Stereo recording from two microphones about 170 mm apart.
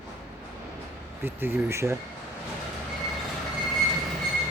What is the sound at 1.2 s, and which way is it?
Speech, 10° right (ahead or behind).